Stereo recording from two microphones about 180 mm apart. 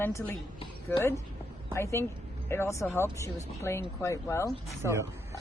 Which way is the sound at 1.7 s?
15° left (ahead or behind).